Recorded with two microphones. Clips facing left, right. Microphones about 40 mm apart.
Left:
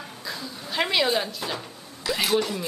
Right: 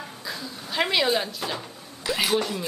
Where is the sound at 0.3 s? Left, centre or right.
Centre.